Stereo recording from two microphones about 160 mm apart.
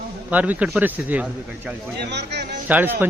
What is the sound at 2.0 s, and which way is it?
Speech, 90° right.